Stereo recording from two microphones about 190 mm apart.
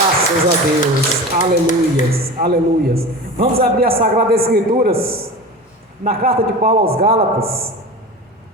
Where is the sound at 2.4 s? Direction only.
50° right (ahead or behind).